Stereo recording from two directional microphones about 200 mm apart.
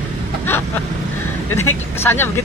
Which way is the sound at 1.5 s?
10° left (ahead or behind).